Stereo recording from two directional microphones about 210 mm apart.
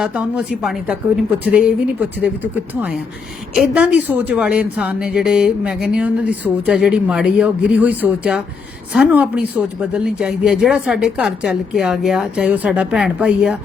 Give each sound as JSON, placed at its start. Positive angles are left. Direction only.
{"t": 0.0, "sound": "a woman's voice", "side_deg": -5}